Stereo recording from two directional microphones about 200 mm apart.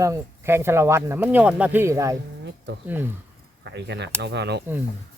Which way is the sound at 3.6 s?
60° right (ahead or behind).